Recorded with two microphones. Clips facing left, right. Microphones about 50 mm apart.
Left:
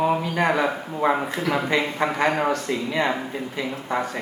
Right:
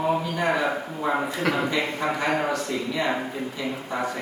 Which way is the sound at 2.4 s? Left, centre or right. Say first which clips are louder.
Left 3 dB; left.